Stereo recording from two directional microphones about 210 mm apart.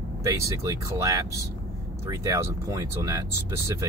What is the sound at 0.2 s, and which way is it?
Speech, 15° right (ahead or behind).